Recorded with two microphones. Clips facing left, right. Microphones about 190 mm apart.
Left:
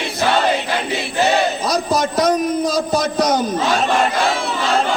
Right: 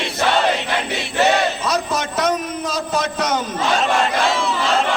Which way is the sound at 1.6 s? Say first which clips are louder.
Left 3 dB; 35° left (ahead or behind).